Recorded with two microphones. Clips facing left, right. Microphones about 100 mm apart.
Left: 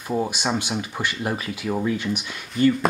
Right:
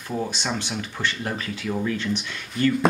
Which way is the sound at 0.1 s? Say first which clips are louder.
Left 4 dB; 15° left (ahead or behind).